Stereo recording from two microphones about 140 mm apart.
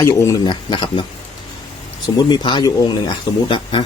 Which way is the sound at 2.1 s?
30° left (ahead or behind).